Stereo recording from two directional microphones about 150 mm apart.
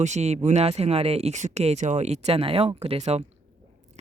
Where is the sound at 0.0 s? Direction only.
50° right (ahead or behind).